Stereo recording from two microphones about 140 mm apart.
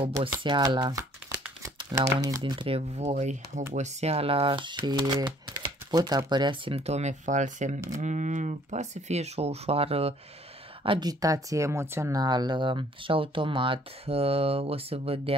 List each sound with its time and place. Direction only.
0.0 s speech: 40° right (ahead or behind)
3.0 s speech: 55° right (ahead or behind)
10.8 s speech: 35° right (ahead or behind)